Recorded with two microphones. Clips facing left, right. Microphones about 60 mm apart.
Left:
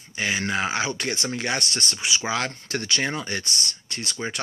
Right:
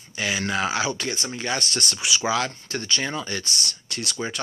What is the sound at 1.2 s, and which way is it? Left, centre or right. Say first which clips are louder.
Speech: left 1 dB; left.